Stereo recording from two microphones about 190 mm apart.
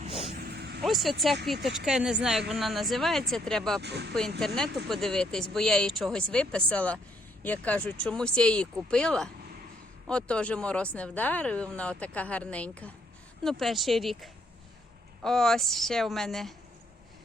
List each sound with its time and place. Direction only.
0.4 s vehicle: 60° right (ahead or behind)
0.8 s speech: centre (ahead or behind)
3.8 s speech: 60° right (ahead or behind)
4.4 s speech: 5° left (ahead or behind)